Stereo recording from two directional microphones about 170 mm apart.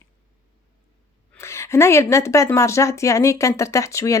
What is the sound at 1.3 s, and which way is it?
A woman's voice, 15° left (ahead or behind).